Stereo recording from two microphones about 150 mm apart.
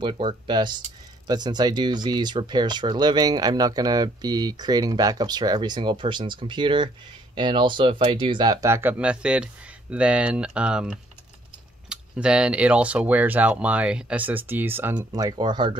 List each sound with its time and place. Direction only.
0.0 s speech: 35° right (ahead or behind)